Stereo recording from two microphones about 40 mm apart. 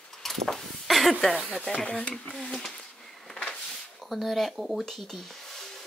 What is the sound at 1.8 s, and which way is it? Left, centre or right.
Speech, left.